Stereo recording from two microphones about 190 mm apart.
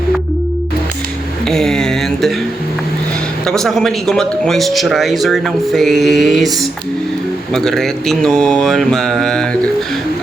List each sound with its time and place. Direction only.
1.5 s speech: centre (ahead or behind)
3.4 s speech: centre (ahead or behind)